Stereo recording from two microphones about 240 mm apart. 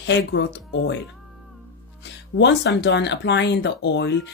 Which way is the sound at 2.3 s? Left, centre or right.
Left.